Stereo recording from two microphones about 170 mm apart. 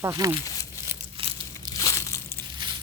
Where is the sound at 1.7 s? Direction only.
20° left (ahead or behind).